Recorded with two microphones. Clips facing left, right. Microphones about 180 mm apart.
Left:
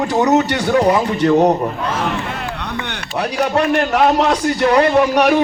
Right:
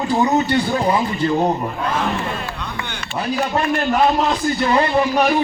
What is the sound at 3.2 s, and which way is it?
A man's voice, 75° left (ahead or behind).